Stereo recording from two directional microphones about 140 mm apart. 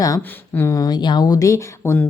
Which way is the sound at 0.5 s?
20° left (ahead or behind).